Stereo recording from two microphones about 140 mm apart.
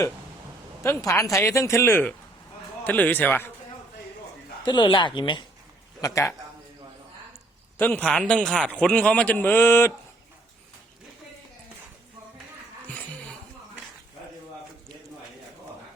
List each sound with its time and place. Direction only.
0.8 s a man's voice: 20° left (ahead or behind)
4.6 s speech: 30° left (ahead or behind)
6.0 s speech: 20° left (ahead or behind)
7.8 s a man's voice: 10° left (ahead or behind)